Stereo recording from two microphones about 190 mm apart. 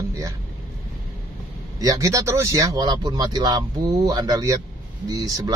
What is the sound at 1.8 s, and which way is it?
A man's voice, 15° right (ahead or behind).